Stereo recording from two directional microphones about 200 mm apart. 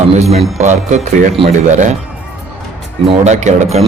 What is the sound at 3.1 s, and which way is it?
Speech, 35° right (ahead or behind).